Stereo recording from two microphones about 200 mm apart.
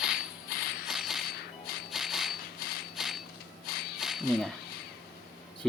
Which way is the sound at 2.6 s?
50° left (ahead or behind).